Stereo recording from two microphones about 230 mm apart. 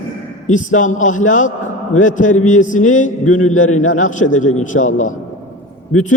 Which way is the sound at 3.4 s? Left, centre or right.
Left.